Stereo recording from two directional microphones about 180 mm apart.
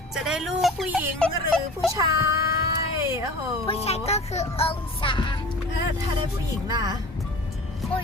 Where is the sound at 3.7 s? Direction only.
35° left (ahead or behind).